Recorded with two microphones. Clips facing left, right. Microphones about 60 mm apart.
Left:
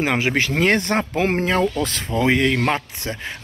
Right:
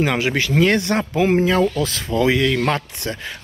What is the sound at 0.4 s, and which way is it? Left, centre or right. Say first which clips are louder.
Speech: right 3 dB; left.